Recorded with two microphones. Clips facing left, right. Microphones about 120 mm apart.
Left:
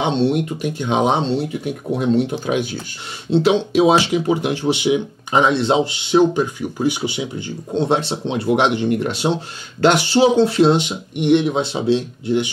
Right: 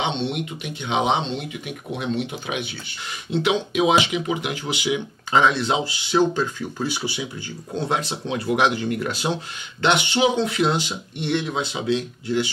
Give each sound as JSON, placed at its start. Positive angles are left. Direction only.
{"t": 0.0, "sound": "speech", "side_deg": 40}
{"t": 3.3, "sound": "speech", "side_deg": 30}
{"t": 9.8, "sound": "speech", "side_deg": 40}